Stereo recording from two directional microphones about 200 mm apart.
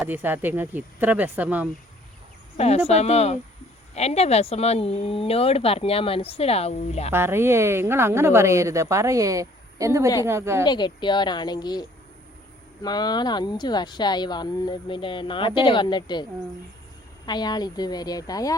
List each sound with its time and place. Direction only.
0.0 s a woman's voice: 10° right (ahead or behind)
2.6 s speech: 30° left (ahead or behind)
7.1 s a woman's voice: 10° right (ahead or behind)
10.7 s speech: 20° left (ahead or behind)
17.2 s speech: 20° left (ahead or behind)